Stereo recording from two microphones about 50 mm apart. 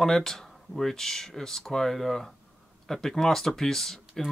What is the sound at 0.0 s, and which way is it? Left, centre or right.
Speech, centre.